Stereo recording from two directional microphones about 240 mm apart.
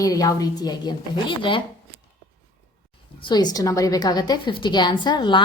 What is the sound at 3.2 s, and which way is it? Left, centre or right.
A woman's voice, centre.